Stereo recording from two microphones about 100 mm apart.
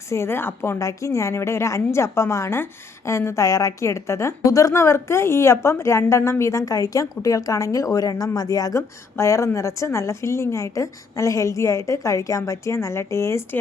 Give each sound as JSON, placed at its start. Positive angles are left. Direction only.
{"t": 0.1, "sound": "a woman's voice", "side_deg": 25}